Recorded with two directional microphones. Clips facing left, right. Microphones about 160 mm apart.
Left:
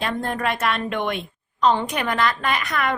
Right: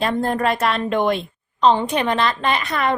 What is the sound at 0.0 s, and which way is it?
A woman's voice, 35° right (ahead or behind).